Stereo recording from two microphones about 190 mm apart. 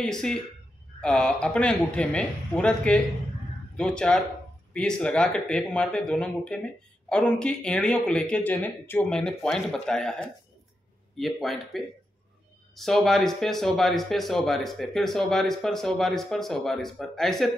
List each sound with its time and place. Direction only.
0.0 s speech: 5° left (ahead or behind)